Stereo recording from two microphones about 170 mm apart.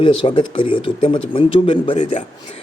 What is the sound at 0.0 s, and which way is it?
A man's voice, 30° left (ahead or behind).